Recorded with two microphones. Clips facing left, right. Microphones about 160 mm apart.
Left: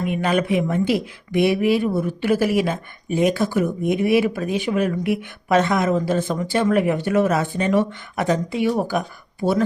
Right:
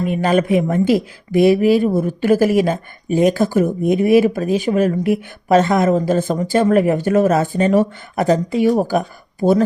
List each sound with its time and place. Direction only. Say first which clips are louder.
0.0 s a woman's voice: right 4 dB; 35° right (ahead or behind)